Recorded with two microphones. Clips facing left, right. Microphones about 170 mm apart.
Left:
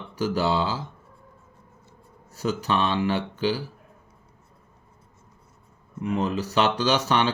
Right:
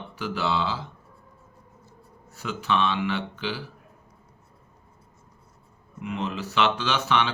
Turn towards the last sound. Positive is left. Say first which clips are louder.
# left 3 dB
turn(degrees=40)  # may be behind; listen again after turning